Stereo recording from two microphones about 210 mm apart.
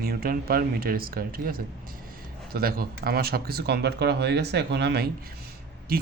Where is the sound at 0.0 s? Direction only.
45° right (ahead or behind).